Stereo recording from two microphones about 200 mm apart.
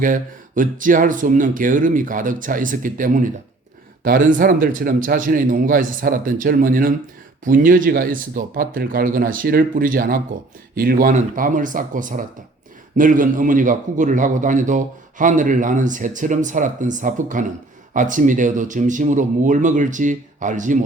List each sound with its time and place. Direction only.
0.0 s a man's voice: 40° right (ahead or behind)